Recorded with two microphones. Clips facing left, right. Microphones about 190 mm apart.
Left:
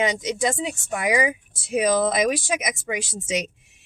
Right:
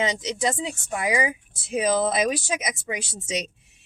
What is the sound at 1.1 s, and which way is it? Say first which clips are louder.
Speech: left 3 dB; 25° right (ahead or behind).